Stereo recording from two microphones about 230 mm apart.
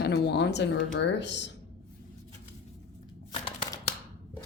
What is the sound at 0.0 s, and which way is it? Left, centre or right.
Speech, left.